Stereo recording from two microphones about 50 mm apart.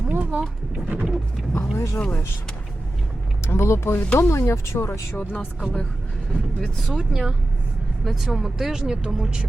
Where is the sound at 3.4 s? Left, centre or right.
Left.